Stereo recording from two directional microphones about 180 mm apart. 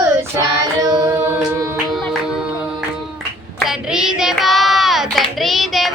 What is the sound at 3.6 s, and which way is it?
Hands, centre (ahead or behind).